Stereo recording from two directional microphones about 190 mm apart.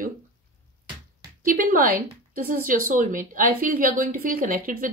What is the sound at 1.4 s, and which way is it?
Speech, 45° right (ahead or behind).